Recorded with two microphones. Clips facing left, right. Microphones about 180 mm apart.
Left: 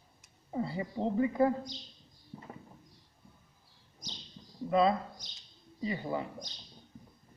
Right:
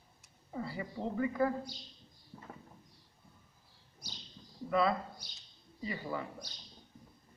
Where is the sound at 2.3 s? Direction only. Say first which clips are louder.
Left 4 dB; 10° left (ahead or behind).